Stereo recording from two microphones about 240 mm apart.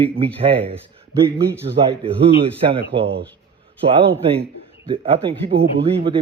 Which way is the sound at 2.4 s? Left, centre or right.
Right.